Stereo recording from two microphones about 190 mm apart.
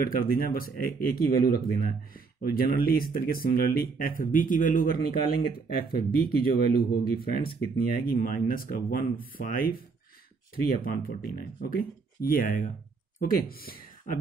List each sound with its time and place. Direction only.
0.0 s speech: 50° left (ahead or behind)